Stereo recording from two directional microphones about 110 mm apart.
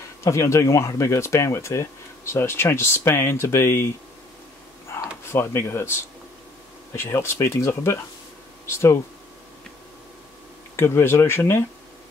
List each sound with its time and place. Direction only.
0.2 s speech: 25° left (ahead or behind)
5.2 s speech: 25° left (ahead or behind)
10.8 s speech: 25° left (ahead or behind)